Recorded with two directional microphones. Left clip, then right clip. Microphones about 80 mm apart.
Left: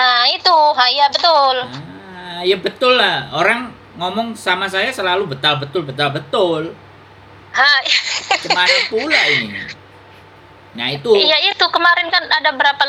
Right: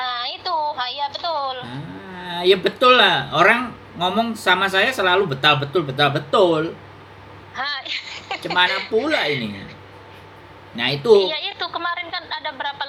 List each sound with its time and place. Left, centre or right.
0.0 s a sound: left
2.1 s speech: centre
7.5 s a woman's voice: left
10.8 s speech: centre
11.1 s a woman's voice: left